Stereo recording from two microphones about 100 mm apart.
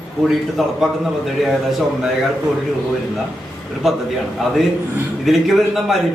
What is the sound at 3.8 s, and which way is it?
Speech, 5° right (ahead or behind).